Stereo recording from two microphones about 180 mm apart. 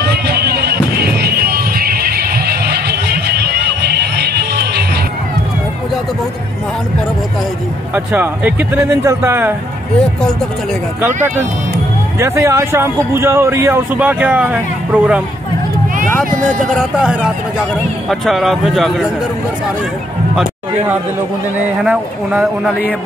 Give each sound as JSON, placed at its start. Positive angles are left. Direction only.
{"t": 0.0, "sound": "music", "side_deg": -65}
{"t": 7.9, "sound": "speech", "side_deg": -10}
{"t": 12.2, "sound": "speech", "side_deg": -15}
{"t": 16.3, "sound": "speech", "side_deg": -50}
{"t": 16.6, "sound": "a man's voice", "side_deg": 0}
{"t": 21.8, "sound": "speech", "side_deg": -5}